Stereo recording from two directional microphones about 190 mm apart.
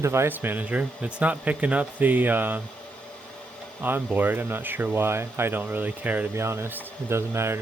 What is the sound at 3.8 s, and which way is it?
Speech, 10° right (ahead or behind).